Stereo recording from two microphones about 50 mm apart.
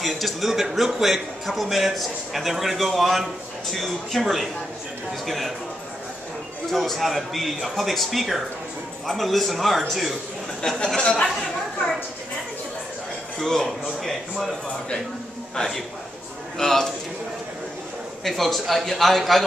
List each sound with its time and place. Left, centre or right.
0.0 s a man's voice: centre
6.7 s a man's voice: centre
10.6 s speech: centre
13.4 s a man's voice: centre
15.5 s a man's voice: centre
18.2 s a man's voice: centre